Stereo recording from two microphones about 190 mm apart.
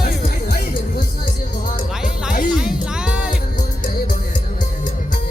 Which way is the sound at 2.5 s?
5° right (ahead or behind).